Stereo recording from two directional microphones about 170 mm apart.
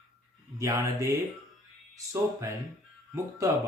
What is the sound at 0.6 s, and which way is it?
Speech, 20° right (ahead or behind).